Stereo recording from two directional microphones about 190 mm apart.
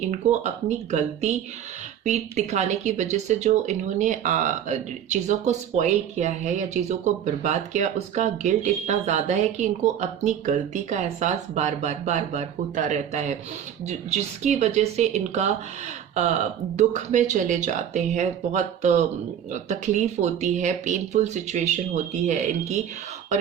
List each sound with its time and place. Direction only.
0.0 s speech: 40° right (ahead or behind)